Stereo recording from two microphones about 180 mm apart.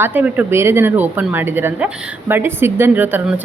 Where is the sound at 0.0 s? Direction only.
10° right (ahead or behind).